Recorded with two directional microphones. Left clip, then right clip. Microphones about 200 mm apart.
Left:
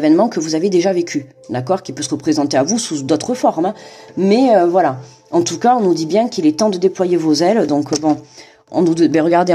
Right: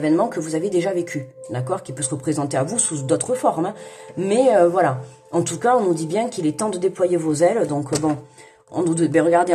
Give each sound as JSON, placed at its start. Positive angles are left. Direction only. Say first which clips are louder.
{"t": 0.0, "sound": "speech", "louder": "left 6 dB", "side_deg": 40}
{"t": 8.7, "sound": "speech", "louder": "left 5 dB", "side_deg": 35}